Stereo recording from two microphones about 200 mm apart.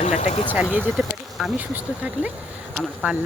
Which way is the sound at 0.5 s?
10° right (ahead or behind).